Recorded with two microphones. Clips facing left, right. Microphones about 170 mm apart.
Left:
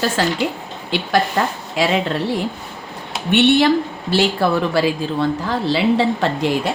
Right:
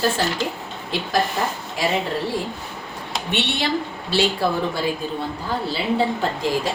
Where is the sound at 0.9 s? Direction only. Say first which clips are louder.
Left 4 dB; 80° left.